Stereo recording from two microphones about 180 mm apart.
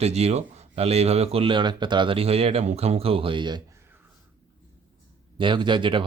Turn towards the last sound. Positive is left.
turn(degrees=-25)  # may be behind; listen again after turning